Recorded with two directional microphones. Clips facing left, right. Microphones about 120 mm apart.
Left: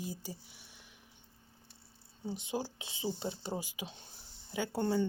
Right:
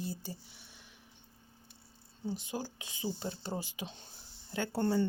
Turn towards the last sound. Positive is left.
turn(degrees=5)  # may be behind; listen again after turning